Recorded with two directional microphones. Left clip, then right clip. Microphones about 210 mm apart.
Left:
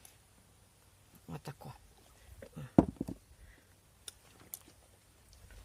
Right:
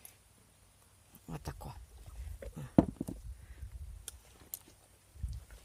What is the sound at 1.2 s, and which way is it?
Speech, 25° right (ahead or behind).